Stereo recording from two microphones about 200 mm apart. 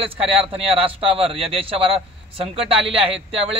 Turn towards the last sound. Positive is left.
turn(degrees=-30)  # may be behind; listen again after turning